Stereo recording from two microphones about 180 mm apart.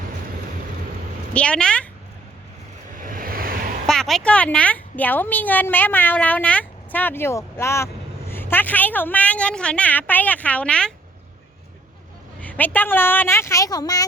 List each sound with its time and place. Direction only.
1.3 s speech: 5° left (ahead or behind)
2.9 s vehicle: 50° right (ahead or behind)
3.8 s speech: centre (ahead or behind)
12.4 s speech: 10° left (ahead or behind)